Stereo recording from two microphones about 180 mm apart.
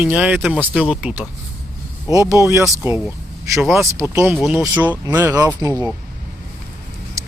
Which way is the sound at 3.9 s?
15° right (ahead or behind).